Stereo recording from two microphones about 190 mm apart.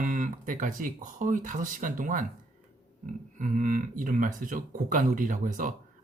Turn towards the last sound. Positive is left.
turn(degrees=-45)  # may be behind; listen again after turning